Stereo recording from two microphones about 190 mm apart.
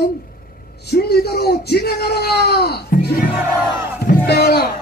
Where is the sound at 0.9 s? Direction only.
55° left (ahead or behind).